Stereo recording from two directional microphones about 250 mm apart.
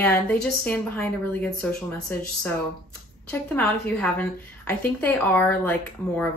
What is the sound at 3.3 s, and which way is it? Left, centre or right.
Speech, centre.